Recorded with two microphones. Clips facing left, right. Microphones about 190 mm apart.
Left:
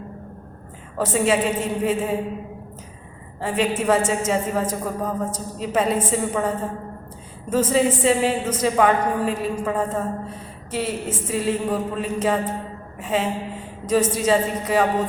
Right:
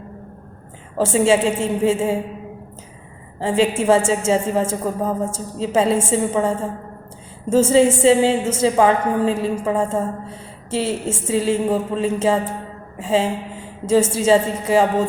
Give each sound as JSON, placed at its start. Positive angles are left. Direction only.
{"t": 0.9, "sound": "a woman's voice", "side_deg": -25}
{"t": 3.4, "sound": "a woman's voice", "side_deg": -25}
{"t": 7.5, "sound": "a woman's voice", "side_deg": -25}